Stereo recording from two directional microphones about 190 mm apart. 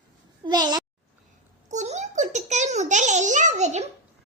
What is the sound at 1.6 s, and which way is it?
A child's voice, 40° right (ahead or behind).